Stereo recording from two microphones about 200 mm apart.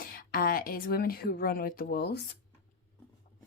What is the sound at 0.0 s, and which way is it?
A woman's voice, 45° left (ahead or behind).